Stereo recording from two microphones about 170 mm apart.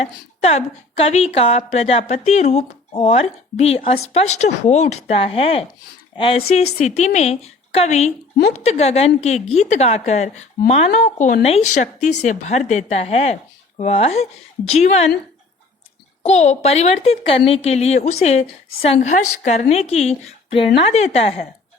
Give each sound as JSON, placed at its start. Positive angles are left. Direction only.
{"t": 0.0, "sound": "a woman's voice", "side_deg": 40}
{"t": 16.2, "sound": "a woman's voice", "side_deg": 40}